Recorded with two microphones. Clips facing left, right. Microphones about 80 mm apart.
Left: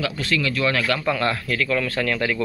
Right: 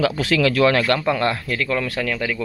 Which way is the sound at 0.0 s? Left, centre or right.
Right.